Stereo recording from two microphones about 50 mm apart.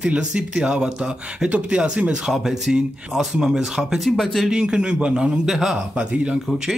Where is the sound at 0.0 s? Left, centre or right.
Right.